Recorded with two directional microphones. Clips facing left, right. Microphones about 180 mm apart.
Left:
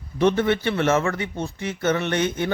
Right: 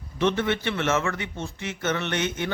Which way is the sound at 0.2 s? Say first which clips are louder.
Left 4 dB; 40° left (ahead or behind).